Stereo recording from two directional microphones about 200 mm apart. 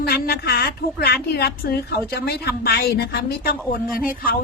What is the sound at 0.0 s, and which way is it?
A woman's voice, 50° left (ahead or behind).